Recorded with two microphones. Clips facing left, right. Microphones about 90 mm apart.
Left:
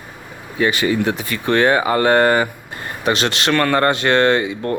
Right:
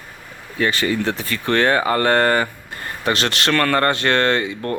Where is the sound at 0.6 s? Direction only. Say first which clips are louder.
Left 3 dB; 15° left (ahead or behind).